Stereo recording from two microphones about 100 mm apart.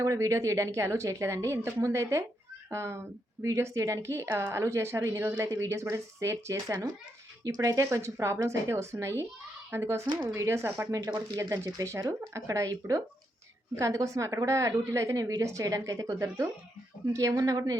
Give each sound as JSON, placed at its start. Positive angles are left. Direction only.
{"t": 0.0, "sound": "a woman's voice", "side_deg": -30}
{"t": 16.1, "sound": "a woman's voice", "side_deg": -25}